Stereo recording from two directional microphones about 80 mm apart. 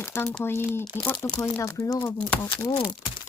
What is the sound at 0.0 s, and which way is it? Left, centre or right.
Crumpling, left.